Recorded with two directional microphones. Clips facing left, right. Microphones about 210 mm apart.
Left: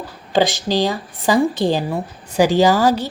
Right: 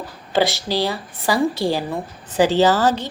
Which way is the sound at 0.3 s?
15° left (ahead or behind).